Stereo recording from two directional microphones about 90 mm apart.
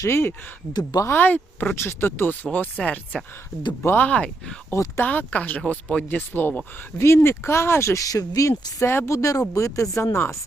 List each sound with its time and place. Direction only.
0.0 s speech: 30° left (ahead or behind)
0.7 s speech: 50° left (ahead or behind)
1.0 s speech: 20° left (ahead or behind)
4.7 s speech: 30° left (ahead or behind)
5.0 s speech: 15° left (ahead or behind)